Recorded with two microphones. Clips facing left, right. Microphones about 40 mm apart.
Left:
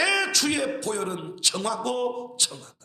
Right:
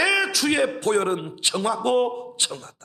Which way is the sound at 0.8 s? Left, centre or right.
Right.